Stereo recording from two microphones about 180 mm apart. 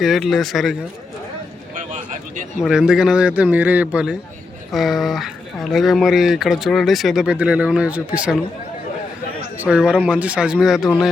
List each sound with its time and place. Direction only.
0.0 s speech: centre (ahead or behind)
1.7 s a sound: 45° right (ahead or behind)
2.6 s a man's voice: 5° right (ahead or behind)
9.6 s speech: 5° right (ahead or behind)